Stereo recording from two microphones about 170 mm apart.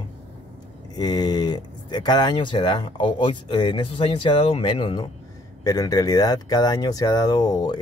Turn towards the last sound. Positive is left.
turn(degrees=25)  # may be behind; listen again after turning